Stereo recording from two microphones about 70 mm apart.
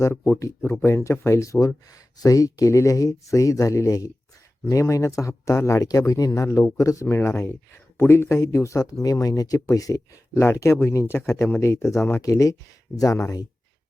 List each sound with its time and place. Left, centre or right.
0.1 s speech: left
10.3 s speech: left